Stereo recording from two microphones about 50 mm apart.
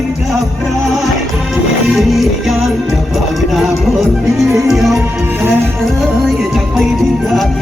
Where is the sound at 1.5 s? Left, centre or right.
Centre.